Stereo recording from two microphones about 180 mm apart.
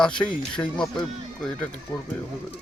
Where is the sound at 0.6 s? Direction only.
20° left (ahead or behind).